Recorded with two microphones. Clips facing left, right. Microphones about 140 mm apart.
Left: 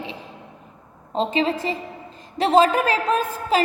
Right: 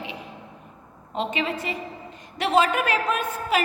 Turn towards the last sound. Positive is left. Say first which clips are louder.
# left 4 dB
turn(degrees=30)  # may be behind; listen again after turning